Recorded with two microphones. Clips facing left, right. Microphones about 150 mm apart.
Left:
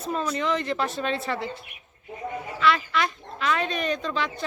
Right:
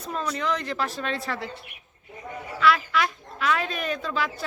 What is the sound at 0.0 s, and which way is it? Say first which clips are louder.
Speech: left 2 dB; centre (ahead or behind).